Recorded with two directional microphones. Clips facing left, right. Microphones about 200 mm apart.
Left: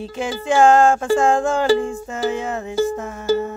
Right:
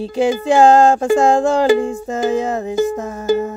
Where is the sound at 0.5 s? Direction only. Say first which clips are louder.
Right 2 dB; 35° right (ahead or behind).